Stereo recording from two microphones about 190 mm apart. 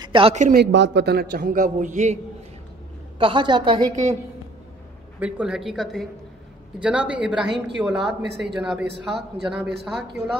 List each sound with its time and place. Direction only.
0.0 s speech: 25° right (ahead or behind)
0.4 s speech: 45° right (ahead or behind)
0.7 s a man's voice: 70° right (ahead or behind); by 2.1 s 40° right (ahead or behind)
3.2 s a woman's voice: 25° right (ahead or behind)
3.9 s a woman's voice: 40° right (ahead or behind)
5.2 s speech: 5° right (ahead or behind)